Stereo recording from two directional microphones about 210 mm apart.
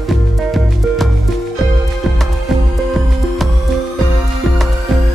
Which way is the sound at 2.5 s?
Centre (ahead or behind).